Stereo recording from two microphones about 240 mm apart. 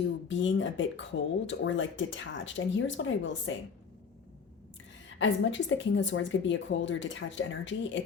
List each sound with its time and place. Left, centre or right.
0.3 s speech: left
5.2 s speech: left